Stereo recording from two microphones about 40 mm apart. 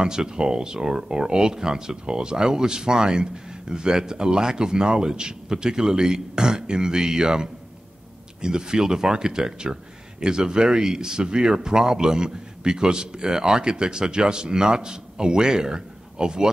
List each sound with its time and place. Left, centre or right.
0.0 s speech: centre